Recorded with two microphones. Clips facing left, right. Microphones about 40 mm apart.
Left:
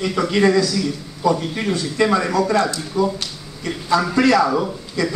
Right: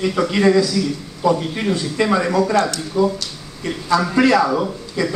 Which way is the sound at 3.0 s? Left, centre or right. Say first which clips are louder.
Right 2 dB; centre.